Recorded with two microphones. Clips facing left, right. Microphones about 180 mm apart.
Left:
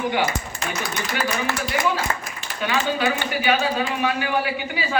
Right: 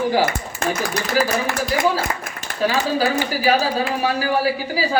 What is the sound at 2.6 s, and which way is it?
Speech, 35° right (ahead or behind).